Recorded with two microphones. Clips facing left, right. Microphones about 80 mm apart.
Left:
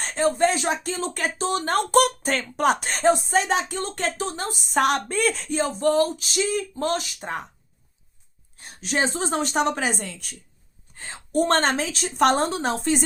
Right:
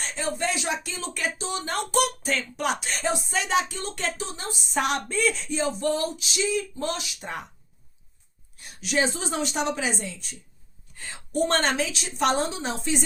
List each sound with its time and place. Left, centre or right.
0.0 s speech: left
8.5 s a woman's voice: left
10.9 s speech: left